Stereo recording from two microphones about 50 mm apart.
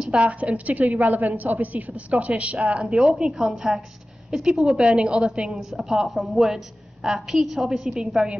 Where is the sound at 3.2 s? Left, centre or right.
Centre.